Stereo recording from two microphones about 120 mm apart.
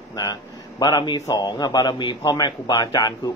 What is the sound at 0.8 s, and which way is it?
A man's voice, 35° left (ahead or behind).